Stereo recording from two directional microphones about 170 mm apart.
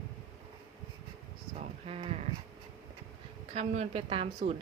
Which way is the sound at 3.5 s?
40° right (ahead or behind).